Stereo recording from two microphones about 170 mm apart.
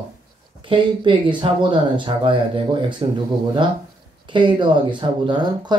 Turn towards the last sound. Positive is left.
turn(degrees=-25)  # may be behind; listen again after turning